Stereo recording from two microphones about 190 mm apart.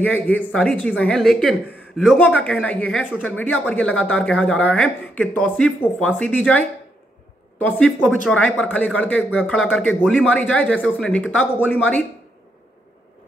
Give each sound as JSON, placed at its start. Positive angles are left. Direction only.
{"t": 0.0, "sound": "a woman's voice", "side_deg": 10}
{"t": 7.6, "sound": "a woman's voice", "side_deg": 5}